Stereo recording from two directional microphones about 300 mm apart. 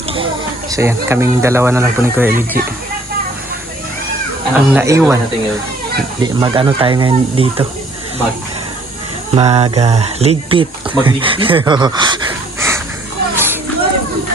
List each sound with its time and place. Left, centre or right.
0.7 s speech: centre
4.5 s speech: centre
6.2 s speech: centre
9.3 s speech: centre
13.3 s children playing: centre